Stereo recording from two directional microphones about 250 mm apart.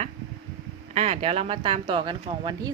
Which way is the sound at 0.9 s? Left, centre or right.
Right.